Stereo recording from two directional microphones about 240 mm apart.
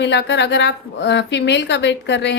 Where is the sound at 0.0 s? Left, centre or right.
Left.